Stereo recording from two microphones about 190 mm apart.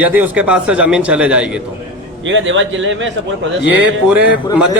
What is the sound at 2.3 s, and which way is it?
Speech, 80° right.